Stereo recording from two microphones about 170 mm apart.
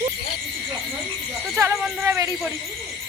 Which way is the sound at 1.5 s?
15° right (ahead or behind).